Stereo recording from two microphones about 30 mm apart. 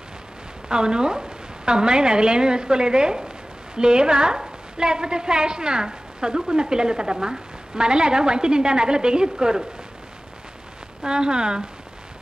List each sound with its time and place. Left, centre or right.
0.7 s a woman's voice: right
11.0 s a woman's voice: right